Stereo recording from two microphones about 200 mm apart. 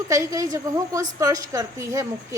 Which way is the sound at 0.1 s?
15° right (ahead or behind).